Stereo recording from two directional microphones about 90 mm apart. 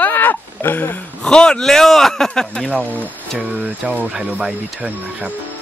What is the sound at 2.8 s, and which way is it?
Speech, 15° left (ahead or behind).